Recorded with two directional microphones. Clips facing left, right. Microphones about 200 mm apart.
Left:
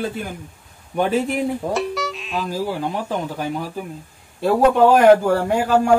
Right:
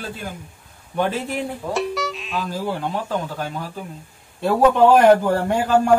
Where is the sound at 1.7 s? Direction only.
Centre (ahead or behind).